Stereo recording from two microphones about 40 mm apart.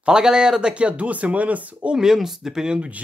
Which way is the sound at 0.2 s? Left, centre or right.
Centre.